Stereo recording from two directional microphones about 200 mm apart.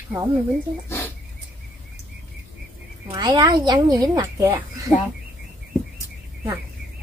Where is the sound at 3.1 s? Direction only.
20° right (ahead or behind).